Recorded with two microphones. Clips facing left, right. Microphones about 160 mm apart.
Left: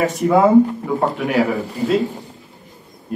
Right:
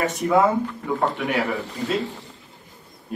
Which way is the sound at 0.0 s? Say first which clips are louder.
Left 5 dB; centre (ahead or behind).